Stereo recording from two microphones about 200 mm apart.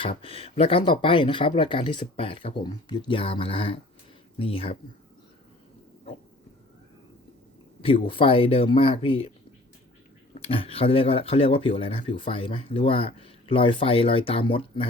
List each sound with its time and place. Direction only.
0.2 s speech: 30° left (ahead or behind)
7.8 s speech: 25° left (ahead or behind)
10.3 s speech: 30° left (ahead or behind)